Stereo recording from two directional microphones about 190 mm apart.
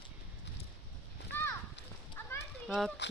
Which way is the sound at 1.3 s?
10° left (ahead or behind).